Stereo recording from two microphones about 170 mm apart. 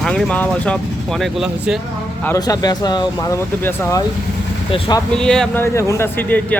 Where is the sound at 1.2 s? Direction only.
5° right (ahead or behind).